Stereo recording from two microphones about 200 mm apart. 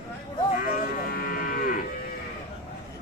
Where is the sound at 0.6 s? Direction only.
50° left (ahead or behind).